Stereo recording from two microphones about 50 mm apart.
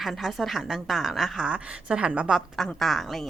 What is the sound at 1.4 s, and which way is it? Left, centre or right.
Speech, right.